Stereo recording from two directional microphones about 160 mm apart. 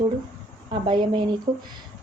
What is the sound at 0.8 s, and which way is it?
Speech, 30° right (ahead or behind).